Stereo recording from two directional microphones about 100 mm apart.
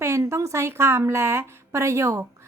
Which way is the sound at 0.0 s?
25° right (ahead or behind).